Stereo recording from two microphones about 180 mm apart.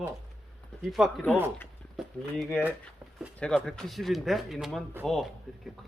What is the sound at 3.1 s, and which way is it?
Speech, 5° right (ahead or behind).